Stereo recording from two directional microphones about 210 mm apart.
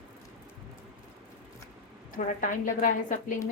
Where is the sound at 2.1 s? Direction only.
40° left (ahead or behind).